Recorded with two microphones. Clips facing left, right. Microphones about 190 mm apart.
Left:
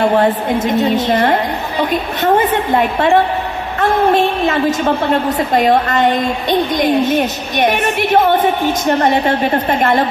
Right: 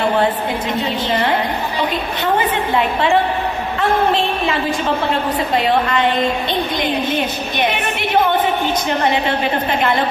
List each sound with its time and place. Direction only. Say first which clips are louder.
0.7 s a woman's voice: left 6 dB; 45° left (ahead or behind)
9.7 s a woman's voice: left 4 dB; 45° left (ahead or behind)